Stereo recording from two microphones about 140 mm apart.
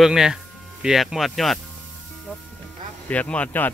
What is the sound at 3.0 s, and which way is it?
Speech, 10° left (ahead or behind).